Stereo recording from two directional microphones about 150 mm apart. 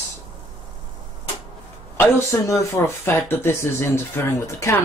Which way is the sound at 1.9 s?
15° left (ahead or behind).